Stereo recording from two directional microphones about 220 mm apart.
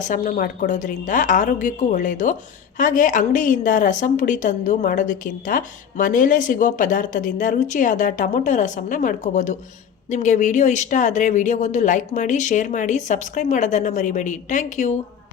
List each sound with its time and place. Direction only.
0.0 s a woman's voice: 35° left (ahead or behind)